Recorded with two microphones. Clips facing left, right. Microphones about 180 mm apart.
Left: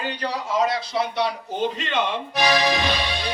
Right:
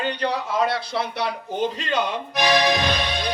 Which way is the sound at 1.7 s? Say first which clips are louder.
Even; 40° right (ahead or behind).